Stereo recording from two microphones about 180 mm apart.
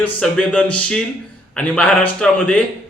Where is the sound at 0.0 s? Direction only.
5° left (ahead or behind).